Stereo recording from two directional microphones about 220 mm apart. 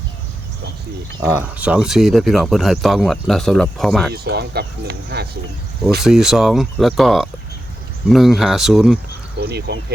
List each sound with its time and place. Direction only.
1.3 s speech: 10° right (ahead or behind)
4.1 s speech: 45° right (ahead or behind)
6.0 s speech: centre (ahead or behind)
9.4 s speech: 50° right (ahead or behind)